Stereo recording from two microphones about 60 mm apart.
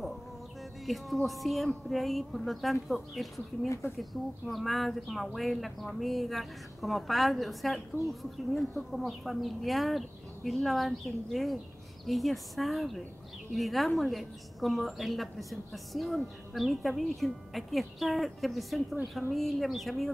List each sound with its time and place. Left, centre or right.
0.8 s speech: centre
3.6 s speech: left
4.0 s speech: centre